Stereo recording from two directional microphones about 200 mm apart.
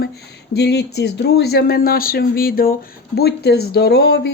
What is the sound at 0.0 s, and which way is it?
Speech, 55° left (ahead or behind).